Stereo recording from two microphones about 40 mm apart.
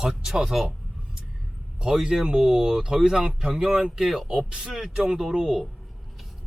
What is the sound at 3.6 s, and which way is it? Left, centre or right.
Speech, centre.